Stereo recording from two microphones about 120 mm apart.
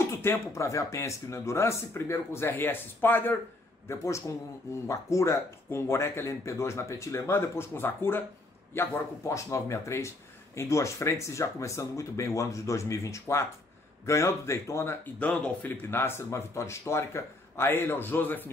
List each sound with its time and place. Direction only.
0.0 s speech: 20° left (ahead or behind)
15.2 s speech: 10° left (ahead or behind)